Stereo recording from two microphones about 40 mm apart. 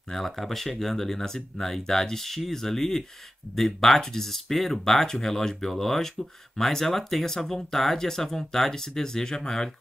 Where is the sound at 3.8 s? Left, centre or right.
Centre.